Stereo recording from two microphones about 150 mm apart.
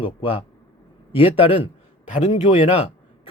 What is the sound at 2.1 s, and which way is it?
Speech, 55° left (ahead or behind).